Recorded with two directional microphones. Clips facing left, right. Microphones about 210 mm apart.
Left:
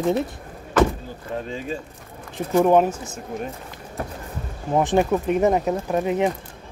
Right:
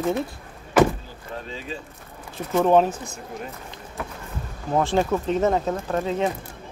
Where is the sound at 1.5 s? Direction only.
50° left (ahead or behind).